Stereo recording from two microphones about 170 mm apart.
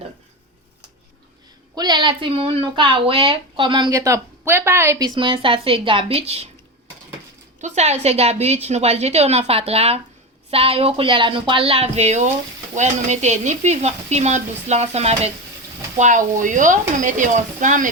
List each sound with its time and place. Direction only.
1.7 s speech: 25° right (ahead or behind)
7.6 s speech: 40° right (ahead or behind)